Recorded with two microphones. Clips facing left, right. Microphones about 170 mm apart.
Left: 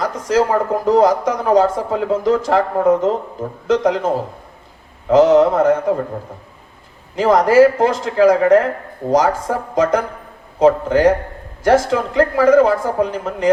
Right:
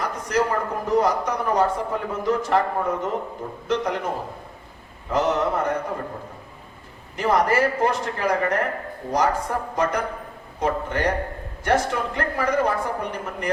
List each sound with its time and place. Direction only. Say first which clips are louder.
0.0 s a man's voice: left 7 dB; 90° left
7.2 s a man's voice: left 9 dB; 90° left